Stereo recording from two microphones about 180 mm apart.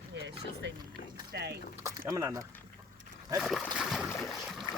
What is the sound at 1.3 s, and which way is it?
Speech, 65° right (ahead or behind).